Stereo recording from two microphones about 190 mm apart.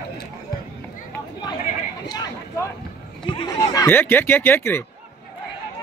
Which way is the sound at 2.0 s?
20° left (ahead or behind).